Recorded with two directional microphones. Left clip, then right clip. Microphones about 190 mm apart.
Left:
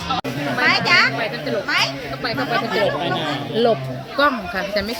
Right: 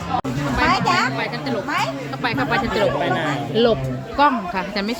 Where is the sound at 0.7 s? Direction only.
45° right (ahead or behind).